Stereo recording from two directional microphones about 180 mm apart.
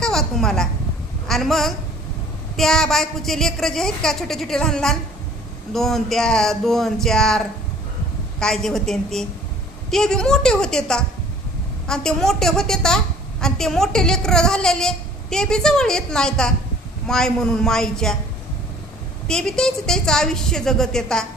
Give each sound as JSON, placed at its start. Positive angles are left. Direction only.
{"t": 0.0, "sound": "a sound", "side_deg": 0}
{"t": 1.3, "sound": "a woman's voice", "side_deg": 0}
{"t": 19.3, "sound": "a woman's voice", "side_deg": 5}